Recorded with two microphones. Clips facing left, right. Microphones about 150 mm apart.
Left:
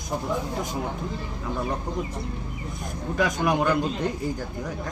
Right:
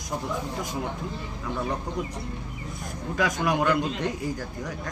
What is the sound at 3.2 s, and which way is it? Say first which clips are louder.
Speech: left 1 dB; 20° left (ahead or behind).